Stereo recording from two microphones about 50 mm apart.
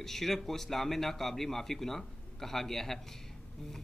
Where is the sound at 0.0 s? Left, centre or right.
Centre.